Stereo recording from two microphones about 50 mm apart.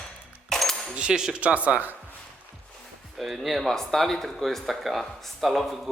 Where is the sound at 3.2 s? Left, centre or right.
Centre.